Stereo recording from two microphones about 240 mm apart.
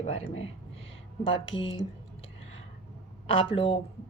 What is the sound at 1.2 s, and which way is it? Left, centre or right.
Speech, left.